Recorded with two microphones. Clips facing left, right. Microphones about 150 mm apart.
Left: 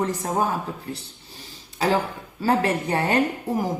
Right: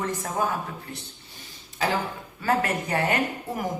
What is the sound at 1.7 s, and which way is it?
A woman's voice, 35° left (ahead or behind).